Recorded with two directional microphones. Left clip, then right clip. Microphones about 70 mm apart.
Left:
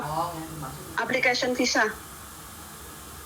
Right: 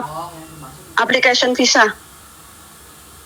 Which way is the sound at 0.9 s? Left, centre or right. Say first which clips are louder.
Right 11 dB; right.